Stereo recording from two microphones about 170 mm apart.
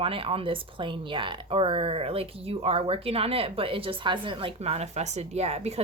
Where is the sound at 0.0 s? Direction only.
30° right (ahead or behind).